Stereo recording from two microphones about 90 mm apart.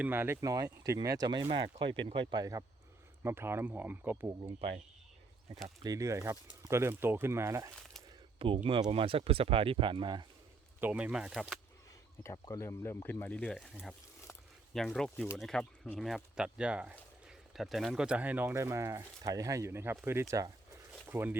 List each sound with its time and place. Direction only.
0.0 s speech: 20° right (ahead or behind)
0.4 s speech: 40° right (ahead or behind)
1.5 s speech: 70° right (ahead or behind)
3.2 s speech: 25° right (ahead or behind)
5.8 s speech: 40° right (ahead or behind)
8.4 s speech: 90° right; by 10.2 s 60° right (ahead or behind)
10.8 s speech: 15° right (ahead or behind)
12.2 s speech: 35° left (ahead or behind); by 13.6 s 15° left (ahead or behind)
13.6 s speech: centre (ahead or behind); by 17.0 s 15° right (ahead or behind)
17.2 s speech: centre (ahead or behind); by 21.3 s 25° right (ahead or behind)